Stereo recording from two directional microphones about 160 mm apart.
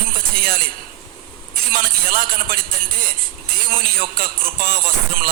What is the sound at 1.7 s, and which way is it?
Speech, 65° right (ahead or behind).